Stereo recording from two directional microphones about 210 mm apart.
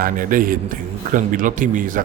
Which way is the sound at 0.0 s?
40° right (ahead or behind).